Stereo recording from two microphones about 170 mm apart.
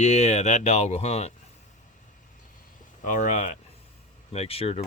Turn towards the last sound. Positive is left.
turn(degrees=35)  # may be behind; listen again after turning